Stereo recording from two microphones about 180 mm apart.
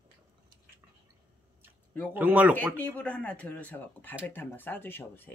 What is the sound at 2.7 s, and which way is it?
Speech, 10° left (ahead or behind).